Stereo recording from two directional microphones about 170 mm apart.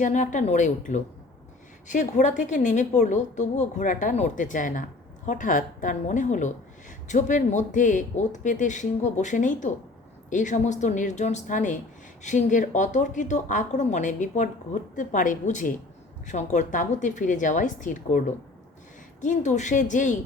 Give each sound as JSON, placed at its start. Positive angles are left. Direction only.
{"t": 0.0, "sound": "a woman's voice", "side_deg": 45}
{"t": 19.2, "sound": "a woman's voice", "side_deg": 45}